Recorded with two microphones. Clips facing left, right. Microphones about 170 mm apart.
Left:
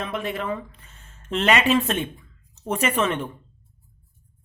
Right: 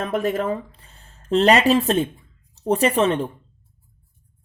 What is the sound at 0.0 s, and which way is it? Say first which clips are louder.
Speech: right 6 dB; 45° right (ahead or behind).